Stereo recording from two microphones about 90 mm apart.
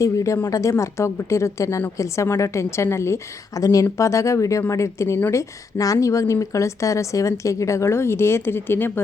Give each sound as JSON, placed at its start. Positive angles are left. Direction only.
{"t": 0.0, "sound": "a woman's voice", "side_deg": 35}